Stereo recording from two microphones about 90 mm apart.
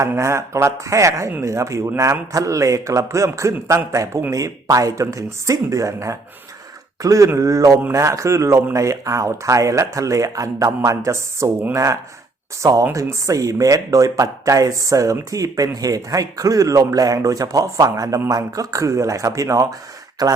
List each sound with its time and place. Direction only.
0.0 s speech: 30° right (ahead or behind)